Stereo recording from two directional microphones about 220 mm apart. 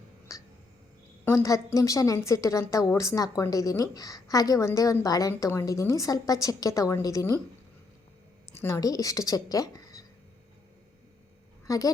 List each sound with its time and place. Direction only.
0.3 s a sound: 15° left (ahead or behind)
1.2 s a woman's voice: 15° left (ahead or behind)
8.5 s speech: 10° left (ahead or behind)
11.6 s dog: 15° left (ahead or behind)